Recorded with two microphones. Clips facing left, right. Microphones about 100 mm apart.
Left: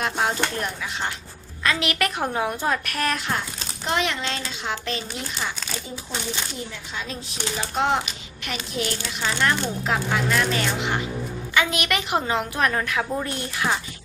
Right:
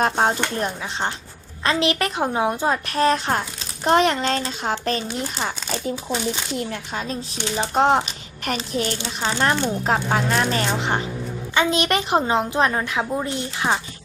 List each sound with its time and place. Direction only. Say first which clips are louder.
0.0 s a woman's voice: right 4 dB; 35° right (ahead or behind)
3.8 s speech: right 8 dB; 40° right (ahead or behind)
6.9 s a woman's voice: right 5 dB; 45° right (ahead or behind); by 13.7 s 25° right (ahead or behind)